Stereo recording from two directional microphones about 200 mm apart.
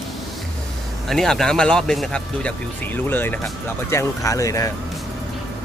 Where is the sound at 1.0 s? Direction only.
Centre (ahead or behind).